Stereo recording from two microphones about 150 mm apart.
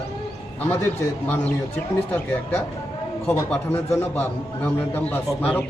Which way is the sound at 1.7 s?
15° left (ahead or behind).